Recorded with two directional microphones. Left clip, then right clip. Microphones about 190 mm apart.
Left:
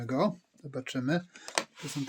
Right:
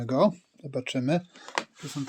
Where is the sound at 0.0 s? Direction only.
30° right (ahead or behind).